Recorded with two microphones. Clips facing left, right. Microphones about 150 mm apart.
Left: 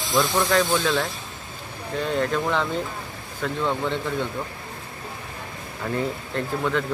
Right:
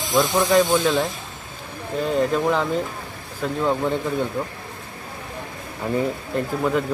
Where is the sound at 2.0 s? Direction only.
5° right (ahead or behind).